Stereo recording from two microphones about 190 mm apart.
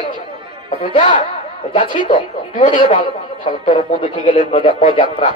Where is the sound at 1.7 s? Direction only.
30° left (ahead or behind).